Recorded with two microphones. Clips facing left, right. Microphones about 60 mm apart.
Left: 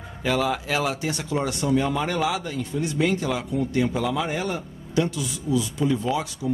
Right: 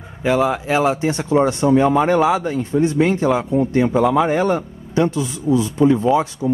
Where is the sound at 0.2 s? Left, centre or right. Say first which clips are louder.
Right 7 dB; right.